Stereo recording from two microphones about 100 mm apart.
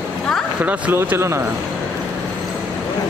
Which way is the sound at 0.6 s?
15° right (ahead or behind).